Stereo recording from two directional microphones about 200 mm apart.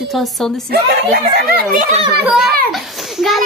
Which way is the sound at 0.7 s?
50° right (ahead or behind).